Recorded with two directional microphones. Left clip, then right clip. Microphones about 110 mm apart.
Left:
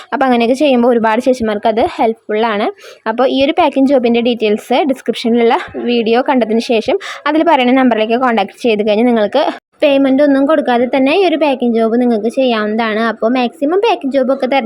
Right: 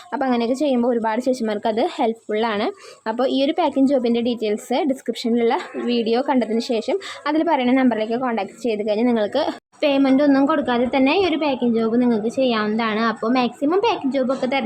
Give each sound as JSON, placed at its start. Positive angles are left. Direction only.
{"t": 0.1, "sound": "a woman's voice", "side_deg": 45}
{"t": 1.5, "sound": "a woman's voice", "side_deg": 20}